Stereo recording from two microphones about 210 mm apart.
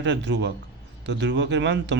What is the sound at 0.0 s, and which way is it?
Speech, 60° right (ahead or behind).